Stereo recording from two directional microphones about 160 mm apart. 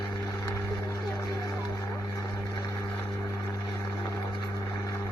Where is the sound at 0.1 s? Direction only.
25° left (ahead or behind).